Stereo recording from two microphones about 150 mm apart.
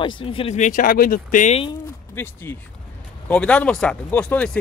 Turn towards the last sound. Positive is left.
turn(degrees=5)  # may be behind; listen again after turning